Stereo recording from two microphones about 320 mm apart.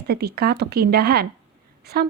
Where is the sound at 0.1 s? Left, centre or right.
Right.